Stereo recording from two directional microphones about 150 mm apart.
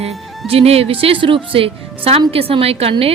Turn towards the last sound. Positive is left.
turn(degrees=-40)  # may be behind; listen again after turning